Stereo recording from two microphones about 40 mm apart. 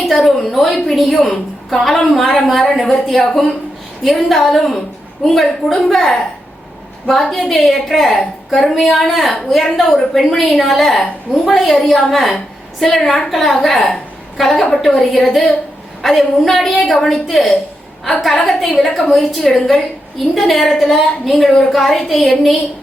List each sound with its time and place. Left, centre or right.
0.0 s a woman's voice: centre